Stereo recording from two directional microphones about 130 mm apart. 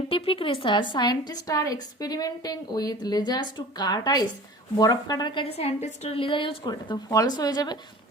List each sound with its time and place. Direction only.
0.1 s a woman's voice: 45° left (ahead or behind)